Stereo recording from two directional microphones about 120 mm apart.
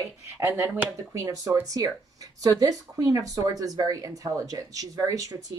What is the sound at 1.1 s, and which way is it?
Speech, 25° right (ahead or behind).